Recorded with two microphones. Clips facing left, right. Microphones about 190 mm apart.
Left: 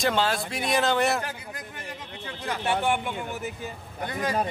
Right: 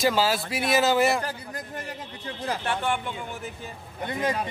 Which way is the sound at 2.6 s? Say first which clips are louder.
Left 5 dB; 10° left (ahead or behind).